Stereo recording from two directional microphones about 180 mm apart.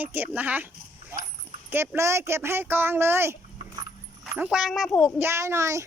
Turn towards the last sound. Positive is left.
turn(degrees=-15)  # may be behind; listen again after turning